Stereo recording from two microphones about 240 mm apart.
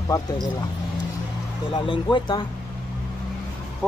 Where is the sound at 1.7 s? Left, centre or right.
Centre.